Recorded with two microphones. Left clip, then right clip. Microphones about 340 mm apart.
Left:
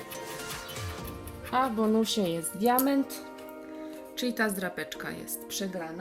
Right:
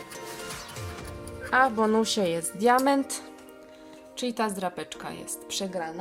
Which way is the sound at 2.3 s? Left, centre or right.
Right.